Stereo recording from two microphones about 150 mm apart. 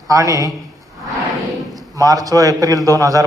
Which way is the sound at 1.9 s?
25° right (ahead or behind).